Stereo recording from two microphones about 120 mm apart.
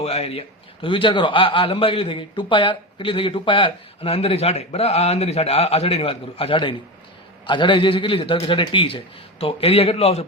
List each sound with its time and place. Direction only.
0.0 s a man's voice: 55° left (ahead or behind)